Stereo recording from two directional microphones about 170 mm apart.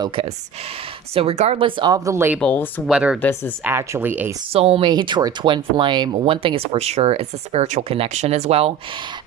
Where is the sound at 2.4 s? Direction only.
10° left (ahead or behind).